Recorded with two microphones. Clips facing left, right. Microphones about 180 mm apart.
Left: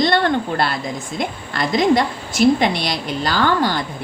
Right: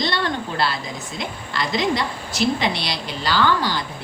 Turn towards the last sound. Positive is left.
turn(degrees=50)  # may be behind; listen again after turning